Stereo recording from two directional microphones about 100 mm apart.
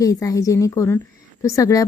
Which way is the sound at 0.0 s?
35° left (ahead or behind).